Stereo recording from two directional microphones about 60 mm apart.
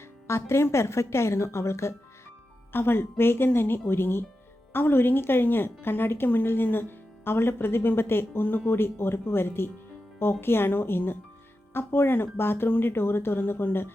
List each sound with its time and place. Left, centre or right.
0.0 s speech: left
2.7 s a woman's voice: left